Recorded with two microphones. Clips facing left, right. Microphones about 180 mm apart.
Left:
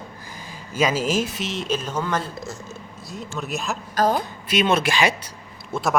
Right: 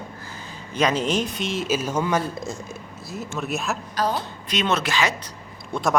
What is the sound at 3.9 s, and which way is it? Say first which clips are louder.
Speech: left 5 dB; 45° left (ahead or behind).